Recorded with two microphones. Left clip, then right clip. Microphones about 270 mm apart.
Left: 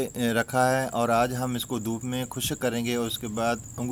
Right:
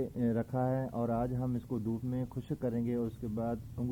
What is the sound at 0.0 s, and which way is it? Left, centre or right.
Speech, centre.